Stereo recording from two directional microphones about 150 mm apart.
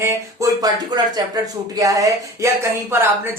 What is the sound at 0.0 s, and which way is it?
Speech, 20° right (ahead or behind).